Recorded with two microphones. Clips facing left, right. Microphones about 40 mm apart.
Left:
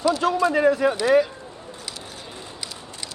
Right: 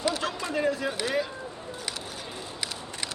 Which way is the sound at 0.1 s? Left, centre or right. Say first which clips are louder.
Left 10 dB; left.